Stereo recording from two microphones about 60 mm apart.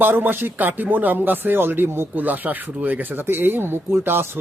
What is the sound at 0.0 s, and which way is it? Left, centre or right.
Speech, right.